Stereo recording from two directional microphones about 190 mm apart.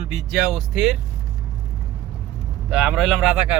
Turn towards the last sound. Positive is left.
turn(degrees=-5)  # may be behind; listen again after turning